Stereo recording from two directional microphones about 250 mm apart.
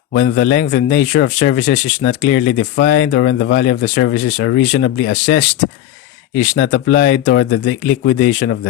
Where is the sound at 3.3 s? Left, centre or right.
Left.